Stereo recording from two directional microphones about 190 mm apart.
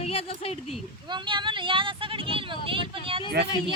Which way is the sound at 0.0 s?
30° left (ahead or behind).